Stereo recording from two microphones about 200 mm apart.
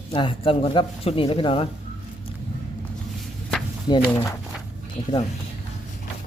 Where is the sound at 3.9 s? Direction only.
20° left (ahead or behind).